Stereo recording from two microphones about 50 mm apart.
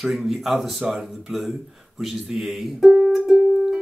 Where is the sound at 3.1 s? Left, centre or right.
Centre.